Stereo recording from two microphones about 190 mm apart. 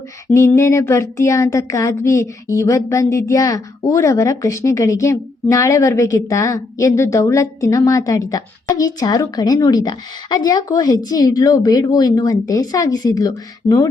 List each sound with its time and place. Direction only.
0.3 s speech: 15° left (ahead or behind)